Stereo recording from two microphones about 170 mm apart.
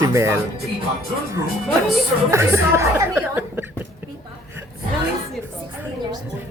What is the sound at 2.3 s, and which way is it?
Speech, 15° right (ahead or behind).